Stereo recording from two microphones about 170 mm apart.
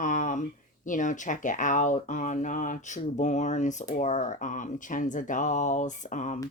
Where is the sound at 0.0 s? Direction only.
50° left (ahead or behind).